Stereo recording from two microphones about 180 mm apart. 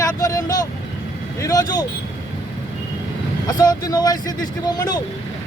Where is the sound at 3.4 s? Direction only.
20° left (ahead or behind).